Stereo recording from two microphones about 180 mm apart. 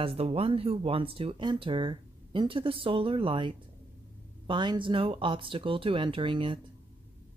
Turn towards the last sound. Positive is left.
turn(degrees=-25)  # may be behind; listen again after turning